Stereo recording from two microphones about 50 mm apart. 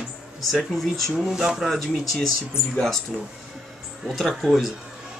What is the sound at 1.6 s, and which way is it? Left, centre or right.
Speech, centre.